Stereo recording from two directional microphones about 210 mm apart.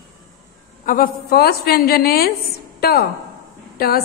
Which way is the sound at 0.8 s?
45° left (ahead or behind).